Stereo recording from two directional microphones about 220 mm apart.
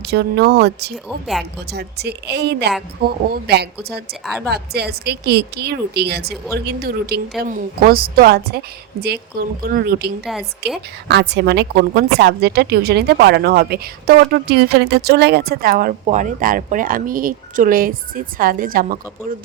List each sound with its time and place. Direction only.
0.1 s a woman's voice: 50° right (ahead or behind)